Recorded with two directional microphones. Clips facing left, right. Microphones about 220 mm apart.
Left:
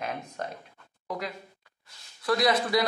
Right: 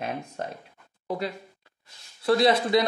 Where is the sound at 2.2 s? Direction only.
30° right (ahead or behind).